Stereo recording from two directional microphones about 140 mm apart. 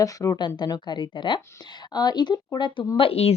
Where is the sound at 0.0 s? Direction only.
25° left (ahead or behind).